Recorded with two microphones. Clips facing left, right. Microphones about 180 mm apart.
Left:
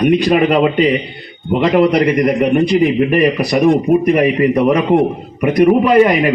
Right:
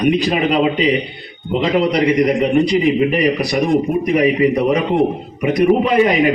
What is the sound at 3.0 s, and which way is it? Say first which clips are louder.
A man's voice: left 3 dB; 55° left (ahead or behind).